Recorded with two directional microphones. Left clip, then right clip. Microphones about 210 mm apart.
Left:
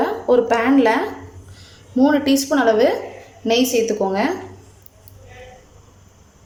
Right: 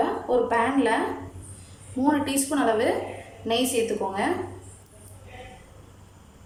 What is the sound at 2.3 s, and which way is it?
Speech, 40° left (ahead or behind).